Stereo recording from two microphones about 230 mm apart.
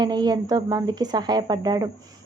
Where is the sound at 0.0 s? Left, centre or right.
Centre.